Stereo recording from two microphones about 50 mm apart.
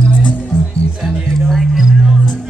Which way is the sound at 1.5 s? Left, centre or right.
Centre.